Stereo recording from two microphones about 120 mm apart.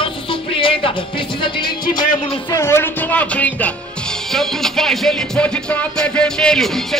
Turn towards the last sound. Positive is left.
turn(degrees=5)  # may be behind; listen again after turning